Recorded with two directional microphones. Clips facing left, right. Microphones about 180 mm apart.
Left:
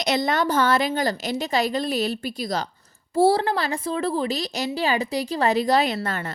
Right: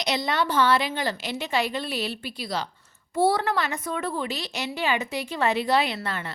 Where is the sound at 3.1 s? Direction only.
30° left (ahead or behind).